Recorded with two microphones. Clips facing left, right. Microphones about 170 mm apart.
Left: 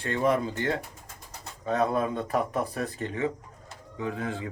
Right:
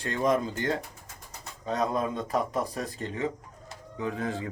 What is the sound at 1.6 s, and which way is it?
Speech, 35° right (ahead or behind).